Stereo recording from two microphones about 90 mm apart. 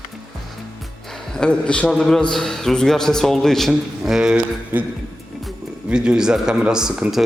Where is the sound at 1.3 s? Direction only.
10° left (ahead or behind); by 4.4 s 10° right (ahead or behind).